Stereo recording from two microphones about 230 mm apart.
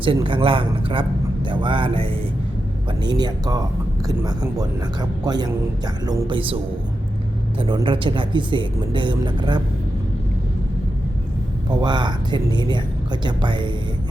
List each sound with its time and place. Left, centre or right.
0.0 s speech: right
7.6 s speech: right
11.7 s speech: centre